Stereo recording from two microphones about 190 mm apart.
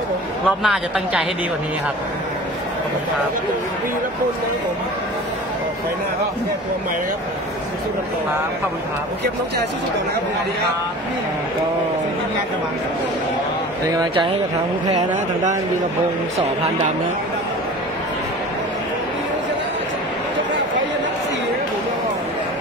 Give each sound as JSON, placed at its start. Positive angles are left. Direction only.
{"t": 0.6, "sound": "speech", "side_deg": 0}
{"t": 13.9, "sound": "speech", "side_deg": -25}